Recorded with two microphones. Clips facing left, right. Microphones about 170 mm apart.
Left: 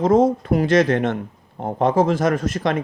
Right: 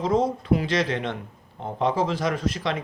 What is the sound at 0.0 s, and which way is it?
Speech, 50° left (ahead or behind).